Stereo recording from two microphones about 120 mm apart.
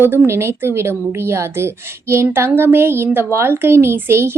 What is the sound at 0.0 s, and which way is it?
A woman's voice, 20° right (ahead or behind).